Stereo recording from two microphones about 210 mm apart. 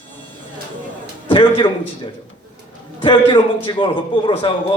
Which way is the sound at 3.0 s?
25° left (ahead or behind).